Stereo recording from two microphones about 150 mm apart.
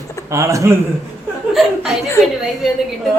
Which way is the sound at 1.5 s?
Centre (ahead or behind).